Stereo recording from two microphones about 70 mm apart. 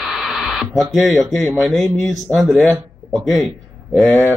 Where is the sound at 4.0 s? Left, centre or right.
Left.